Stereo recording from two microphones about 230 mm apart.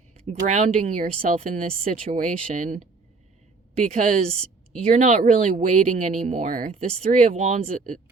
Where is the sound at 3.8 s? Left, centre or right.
Right.